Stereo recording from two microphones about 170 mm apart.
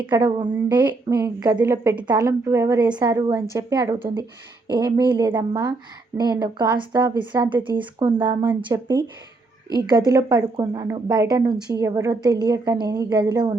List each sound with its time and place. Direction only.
0.1 s a woman's voice: 25° right (ahead or behind)
0.5 s a woman's voice: 10° right (ahead or behind)
1.5 s a woman's voice: 10° right (ahead or behind)
10.1 s a woman's voice: 20° right (ahead or behind)